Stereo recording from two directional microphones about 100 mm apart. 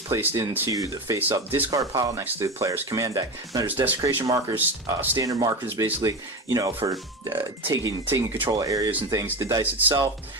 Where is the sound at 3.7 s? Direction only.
20° right (ahead or behind).